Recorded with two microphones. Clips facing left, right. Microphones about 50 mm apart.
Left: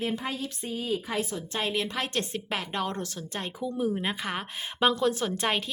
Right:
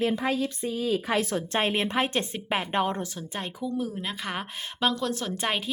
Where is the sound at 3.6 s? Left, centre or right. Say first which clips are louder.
Left 3 dB; centre.